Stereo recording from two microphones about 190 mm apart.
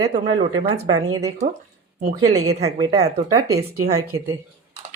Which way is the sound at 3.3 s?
15° right (ahead or behind).